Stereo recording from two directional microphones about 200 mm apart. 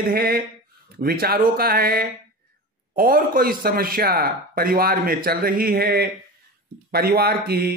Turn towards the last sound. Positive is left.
turn(degrees=-50)  # may be behind; listen again after turning